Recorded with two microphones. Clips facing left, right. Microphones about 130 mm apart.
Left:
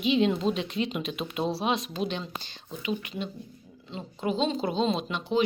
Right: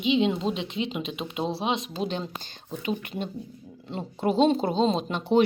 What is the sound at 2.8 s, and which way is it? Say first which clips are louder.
A woman's voice: right 2 dB; 45° right (ahead or behind).